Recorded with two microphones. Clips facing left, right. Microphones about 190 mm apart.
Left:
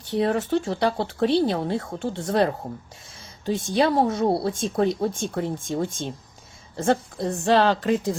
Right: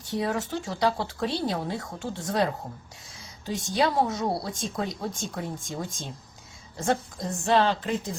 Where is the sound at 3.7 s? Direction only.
30° left (ahead or behind).